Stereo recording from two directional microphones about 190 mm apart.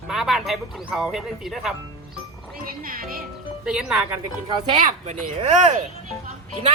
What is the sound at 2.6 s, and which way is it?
Speech, 50° right (ahead or behind).